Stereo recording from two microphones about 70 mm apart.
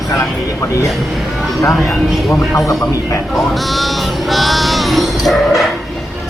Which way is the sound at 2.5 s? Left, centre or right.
Left.